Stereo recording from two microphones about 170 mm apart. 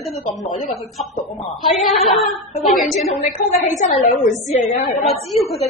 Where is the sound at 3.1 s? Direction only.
40° left (ahead or behind).